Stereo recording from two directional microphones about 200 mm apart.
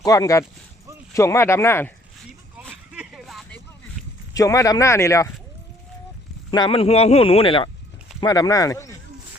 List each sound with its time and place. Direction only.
0.0 s speech: 15° left (ahead or behind)
2.6 s a sound: 5° right (ahead or behind)
4.4 s speech: 15° left (ahead or behind)
6.5 s speech: 25° left (ahead or behind)